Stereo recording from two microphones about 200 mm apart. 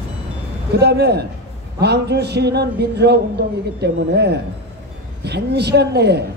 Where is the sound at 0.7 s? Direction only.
55° right (ahead or behind).